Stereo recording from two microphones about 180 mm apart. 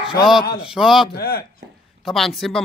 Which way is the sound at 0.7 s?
Centre (ahead or behind).